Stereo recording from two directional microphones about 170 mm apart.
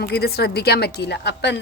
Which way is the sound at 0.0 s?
65° left (ahead or behind).